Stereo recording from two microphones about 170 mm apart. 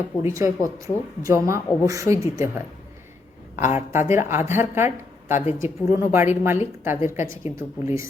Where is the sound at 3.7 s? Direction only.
15° right (ahead or behind).